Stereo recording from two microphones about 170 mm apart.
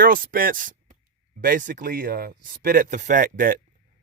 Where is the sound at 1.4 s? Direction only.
55° right (ahead or behind).